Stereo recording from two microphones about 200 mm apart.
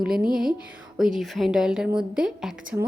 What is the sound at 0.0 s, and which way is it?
A woman's voice, 5° right (ahead or behind).